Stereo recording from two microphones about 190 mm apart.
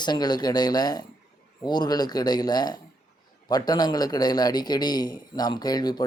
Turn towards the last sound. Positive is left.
turn(degrees=20)  # may be behind; listen again after turning